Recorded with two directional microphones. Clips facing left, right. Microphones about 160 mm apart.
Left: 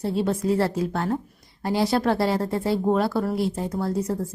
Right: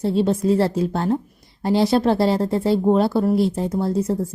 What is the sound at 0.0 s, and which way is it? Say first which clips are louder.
Speech: right 5 dB; 25° right (ahead or behind).